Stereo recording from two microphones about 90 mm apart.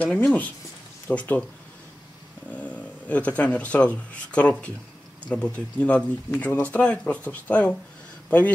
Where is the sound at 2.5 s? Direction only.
15° left (ahead or behind).